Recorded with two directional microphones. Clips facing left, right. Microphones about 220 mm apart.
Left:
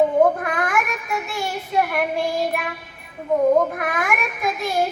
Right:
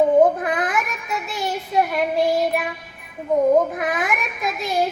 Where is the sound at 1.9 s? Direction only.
20° right (ahead or behind).